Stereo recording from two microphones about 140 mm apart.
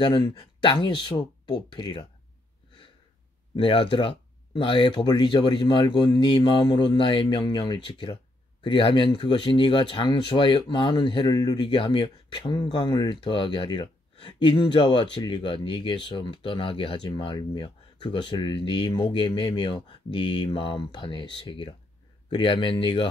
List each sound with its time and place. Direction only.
0.0 s speech: 35° left (ahead or behind)
3.5 s speech: 40° left (ahead or behind)